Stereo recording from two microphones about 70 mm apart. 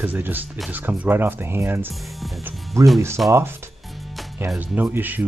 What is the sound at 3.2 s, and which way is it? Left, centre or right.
Speech, centre.